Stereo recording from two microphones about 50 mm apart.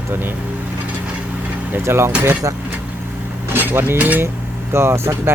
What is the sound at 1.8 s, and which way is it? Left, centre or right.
Speech, right.